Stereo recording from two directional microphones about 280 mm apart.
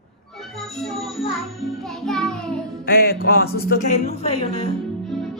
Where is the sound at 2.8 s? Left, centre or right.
Left.